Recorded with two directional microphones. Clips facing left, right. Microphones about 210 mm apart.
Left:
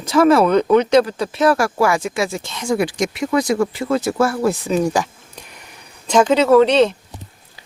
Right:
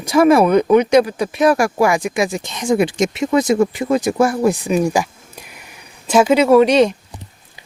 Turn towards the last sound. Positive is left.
turn(degrees=-15)  # may be behind; listen again after turning